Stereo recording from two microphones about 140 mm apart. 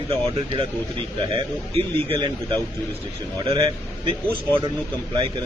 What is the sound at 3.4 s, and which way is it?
Speech, 35° right (ahead or behind).